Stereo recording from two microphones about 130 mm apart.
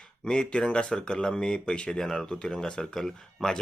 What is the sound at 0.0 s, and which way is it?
Speech, 5° left (ahead or behind).